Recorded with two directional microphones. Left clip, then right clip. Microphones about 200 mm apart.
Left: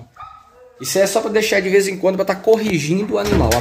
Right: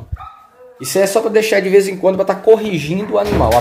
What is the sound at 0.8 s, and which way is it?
Speech, 5° right (ahead or behind).